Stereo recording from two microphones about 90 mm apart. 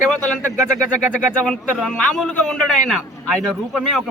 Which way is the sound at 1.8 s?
5° left (ahead or behind).